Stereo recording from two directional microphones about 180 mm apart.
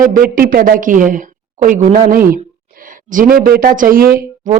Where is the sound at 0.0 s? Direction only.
50° right (ahead or behind).